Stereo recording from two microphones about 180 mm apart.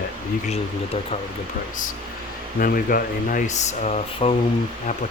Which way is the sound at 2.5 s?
50° left (ahead or behind).